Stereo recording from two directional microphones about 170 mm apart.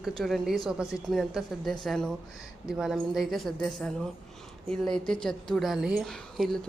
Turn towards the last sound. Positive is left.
turn(degrees=0)  # may be behind; listen again after turning